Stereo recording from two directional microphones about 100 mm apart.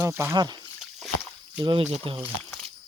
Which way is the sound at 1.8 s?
85° right.